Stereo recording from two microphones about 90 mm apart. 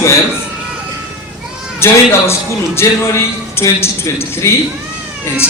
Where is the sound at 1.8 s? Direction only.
30° left (ahead or behind).